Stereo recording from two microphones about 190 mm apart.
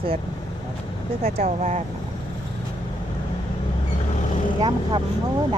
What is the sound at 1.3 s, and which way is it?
Speech, 35° right (ahead or behind).